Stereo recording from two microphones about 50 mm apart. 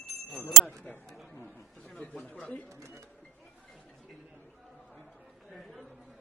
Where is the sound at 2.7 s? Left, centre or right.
Right.